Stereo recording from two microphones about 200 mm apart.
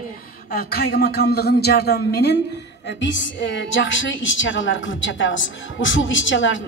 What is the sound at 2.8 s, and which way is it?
A woman's voice, 65° left (ahead or behind).